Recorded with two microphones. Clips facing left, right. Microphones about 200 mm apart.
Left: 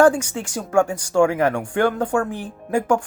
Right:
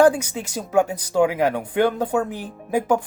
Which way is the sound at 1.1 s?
15° right (ahead or behind).